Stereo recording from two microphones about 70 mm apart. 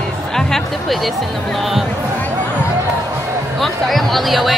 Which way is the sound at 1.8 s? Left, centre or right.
Left.